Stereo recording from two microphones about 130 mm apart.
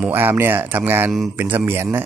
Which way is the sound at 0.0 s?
15° right (ahead or behind).